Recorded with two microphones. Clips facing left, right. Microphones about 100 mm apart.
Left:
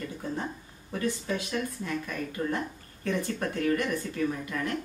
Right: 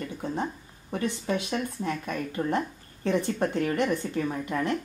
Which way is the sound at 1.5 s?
50° right (ahead or behind).